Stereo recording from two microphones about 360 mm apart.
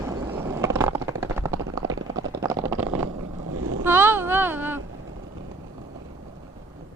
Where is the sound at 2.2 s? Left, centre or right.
Right.